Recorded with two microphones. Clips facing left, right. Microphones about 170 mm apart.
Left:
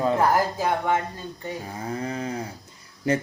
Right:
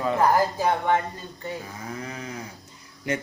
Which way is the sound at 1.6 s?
30° left (ahead or behind).